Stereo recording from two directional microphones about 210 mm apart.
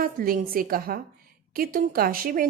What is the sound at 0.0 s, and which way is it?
Speech, 45° right (ahead or behind).